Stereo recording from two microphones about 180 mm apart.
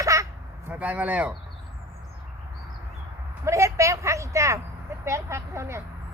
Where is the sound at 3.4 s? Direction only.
15° right (ahead or behind).